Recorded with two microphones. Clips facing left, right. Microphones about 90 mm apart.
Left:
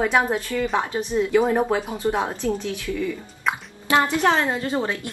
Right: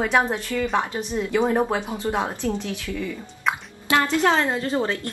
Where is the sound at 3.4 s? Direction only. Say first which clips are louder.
Even; 20° left (ahead or behind).